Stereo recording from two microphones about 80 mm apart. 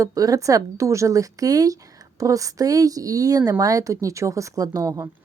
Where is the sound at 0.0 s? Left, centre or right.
Right.